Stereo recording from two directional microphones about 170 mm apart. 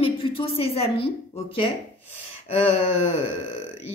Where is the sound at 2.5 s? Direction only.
40° left (ahead or behind).